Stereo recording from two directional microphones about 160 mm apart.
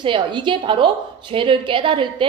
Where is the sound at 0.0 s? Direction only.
30° right (ahead or behind).